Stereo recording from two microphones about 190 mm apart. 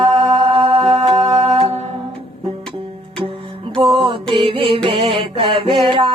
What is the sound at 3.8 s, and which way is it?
Music, 25° right (ahead or behind).